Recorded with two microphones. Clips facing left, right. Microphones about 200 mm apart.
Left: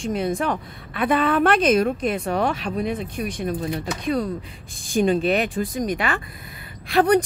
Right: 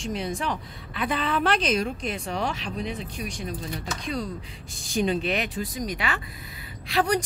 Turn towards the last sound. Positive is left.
turn(degrees=55)  # may be behind; listen again after turning